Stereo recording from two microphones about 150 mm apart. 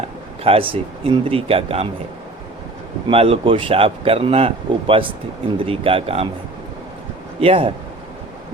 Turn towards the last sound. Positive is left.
turn(degrees=-40)  # may be behind; listen again after turning